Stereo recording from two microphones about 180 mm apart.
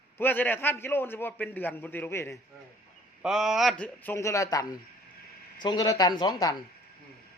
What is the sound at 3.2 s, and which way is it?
A man's voice, 5° right (ahead or behind).